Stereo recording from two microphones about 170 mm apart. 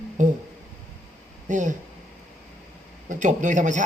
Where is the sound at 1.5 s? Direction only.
45° right (ahead or behind).